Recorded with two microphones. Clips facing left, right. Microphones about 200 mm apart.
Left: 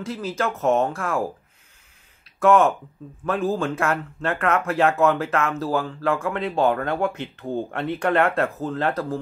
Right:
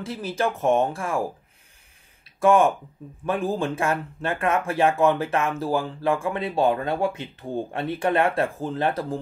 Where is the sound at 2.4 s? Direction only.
10° right (ahead or behind).